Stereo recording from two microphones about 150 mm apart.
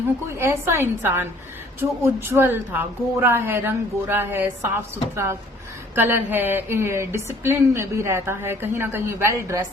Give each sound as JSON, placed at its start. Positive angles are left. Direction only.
{"t": 0.3, "sound": "a woman's voice", "side_deg": -15}